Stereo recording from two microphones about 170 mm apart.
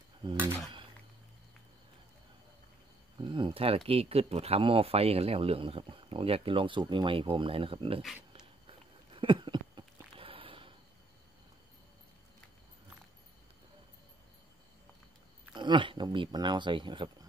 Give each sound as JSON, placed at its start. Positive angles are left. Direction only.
{"t": 0.2, "sound": "cutlery", "side_deg": -30}
{"t": 3.2, "sound": "speech", "side_deg": -30}
{"t": 8.3, "sound": "a sound", "side_deg": -30}
{"t": 15.5, "sound": "speech", "side_deg": -25}